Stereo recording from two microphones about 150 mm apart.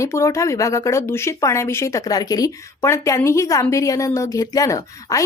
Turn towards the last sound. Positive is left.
turn(degrees=20)  # may be behind; listen again after turning